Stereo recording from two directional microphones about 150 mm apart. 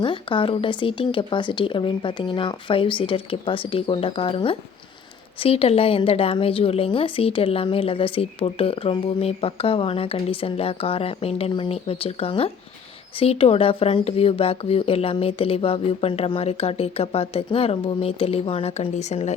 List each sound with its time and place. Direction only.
0.0 s speech: 35° left (ahead or behind)